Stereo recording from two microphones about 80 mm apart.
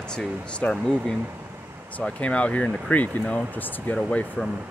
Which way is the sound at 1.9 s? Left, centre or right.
Centre.